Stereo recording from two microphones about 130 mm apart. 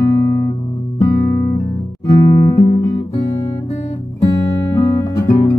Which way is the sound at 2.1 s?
25° left (ahead or behind).